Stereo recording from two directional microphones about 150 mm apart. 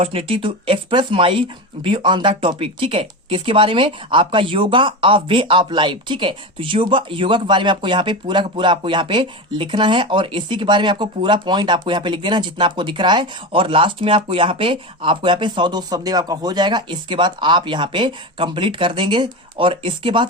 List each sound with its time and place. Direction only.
0.0 s speech: 40° right (ahead or behind)